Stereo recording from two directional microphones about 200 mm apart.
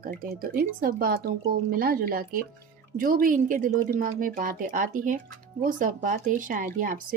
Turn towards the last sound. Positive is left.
turn(degrees=-40)  # may be behind; listen again after turning